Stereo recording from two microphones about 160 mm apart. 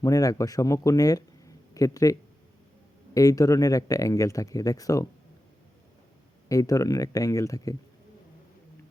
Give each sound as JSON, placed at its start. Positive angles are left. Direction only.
{"t": 0.0, "sound": "speech", "side_deg": 20}
{"t": 3.2, "sound": "speech", "side_deg": 20}
{"t": 6.5, "sound": "speech", "side_deg": 20}